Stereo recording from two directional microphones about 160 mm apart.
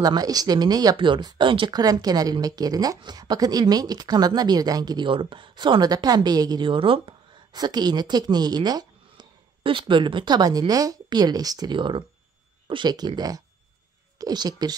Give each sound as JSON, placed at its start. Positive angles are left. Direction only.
{"t": 0.0, "sound": "speech", "side_deg": -25}